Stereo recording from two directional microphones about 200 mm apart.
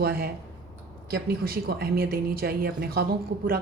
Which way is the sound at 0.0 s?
50° right (ahead or behind).